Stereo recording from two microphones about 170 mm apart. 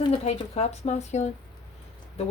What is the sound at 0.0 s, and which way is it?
A woman's voice, 35° left (ahead or behind).